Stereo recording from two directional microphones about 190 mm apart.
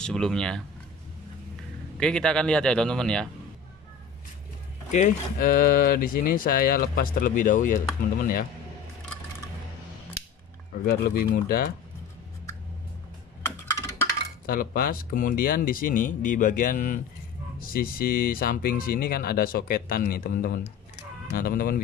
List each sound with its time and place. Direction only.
0.0 s speech: 5° left (ahead or behind)
2.0 s speech: 5° left (ahead or behind)
4.9 s speech: 45° left (ahead or behind)
10.9 s speech: 55° left (ahead or behind)
14.4 s speech: 50° left (ahead or behind)